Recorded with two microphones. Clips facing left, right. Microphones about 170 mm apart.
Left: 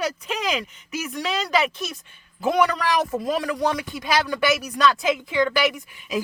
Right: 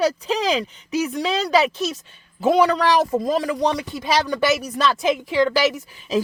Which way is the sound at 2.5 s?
30° right (ahead or behind).